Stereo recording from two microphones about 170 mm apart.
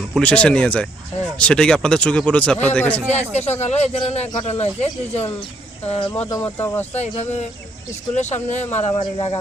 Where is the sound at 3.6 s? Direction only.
40° left (ahead or behind).